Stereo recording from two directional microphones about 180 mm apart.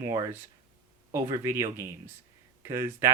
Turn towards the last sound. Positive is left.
turn(degrees=-15)  # may be behind; listen again after turning